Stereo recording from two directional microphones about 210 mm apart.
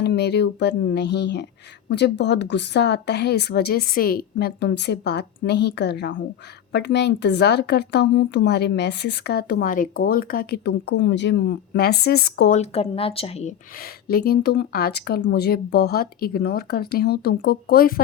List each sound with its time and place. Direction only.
0.0 s a woman's voice: 55° left (ahead or behind)
12.5 s a woman's voice: 30° left (ahead or behind)